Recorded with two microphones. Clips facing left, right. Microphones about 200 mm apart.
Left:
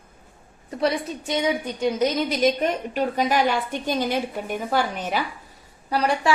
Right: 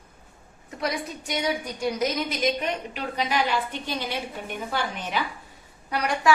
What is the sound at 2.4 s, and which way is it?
A woman's voice, 45° left (ahead or behind).